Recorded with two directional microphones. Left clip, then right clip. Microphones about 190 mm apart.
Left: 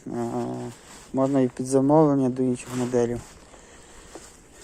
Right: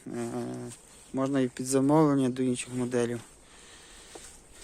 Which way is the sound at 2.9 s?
40° right (ahead or behind).